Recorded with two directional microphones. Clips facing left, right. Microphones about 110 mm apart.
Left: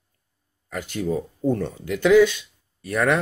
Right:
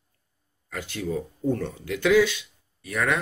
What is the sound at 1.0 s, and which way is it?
Speech, 15° left (ahead or behind).